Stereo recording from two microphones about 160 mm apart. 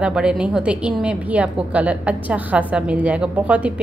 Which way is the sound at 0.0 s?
5° right (ahead or behind).